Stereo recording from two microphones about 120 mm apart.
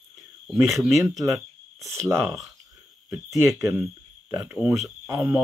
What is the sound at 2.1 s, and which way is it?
Speech, 20° right (ahead or behind).